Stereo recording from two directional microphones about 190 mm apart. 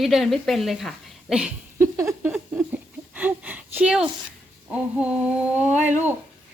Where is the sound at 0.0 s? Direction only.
Centre (ahead or behind).